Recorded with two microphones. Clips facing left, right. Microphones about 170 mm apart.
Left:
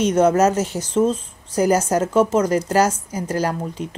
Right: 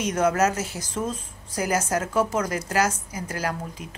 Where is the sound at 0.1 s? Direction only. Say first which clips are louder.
Left 4 dB; 30° left (ahead or behind).